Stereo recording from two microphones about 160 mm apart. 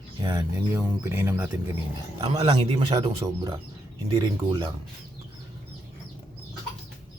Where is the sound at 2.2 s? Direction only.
40° right (ahead or behind).